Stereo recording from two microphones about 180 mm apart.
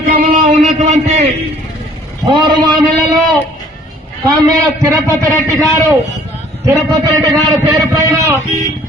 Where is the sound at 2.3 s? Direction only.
25° right (ahead or behind).